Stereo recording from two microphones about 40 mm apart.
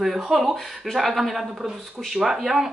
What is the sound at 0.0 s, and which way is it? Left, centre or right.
Speech, centre.